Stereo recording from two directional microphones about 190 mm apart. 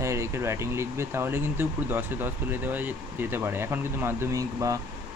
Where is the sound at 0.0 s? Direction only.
15° right (ahead or behind).